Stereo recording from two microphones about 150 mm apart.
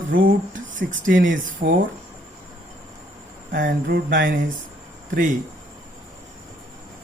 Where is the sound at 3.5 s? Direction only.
65° right (ahead or behind).